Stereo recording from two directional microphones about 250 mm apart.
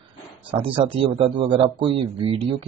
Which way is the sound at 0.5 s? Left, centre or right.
Right.